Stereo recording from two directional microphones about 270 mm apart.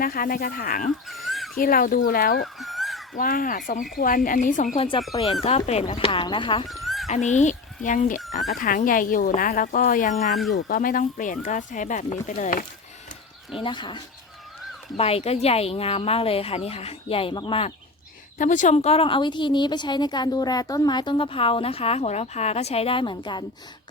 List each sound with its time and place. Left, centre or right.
0.0 s speech: left
1.0 s a sound: centre
1.5 s speech: left
2.4 s dog: centre
3.2 s a woman's voice: left
6.7 s a sound: centre
7.1 s a woman's voice: left
8.2 s speech: centre
8.5 s a woman's voice: left
13.5 s a woman's voice: centre